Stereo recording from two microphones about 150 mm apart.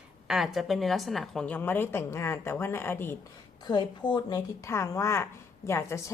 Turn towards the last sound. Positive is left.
turn(degrees=20)  # may be behind; listen again after turning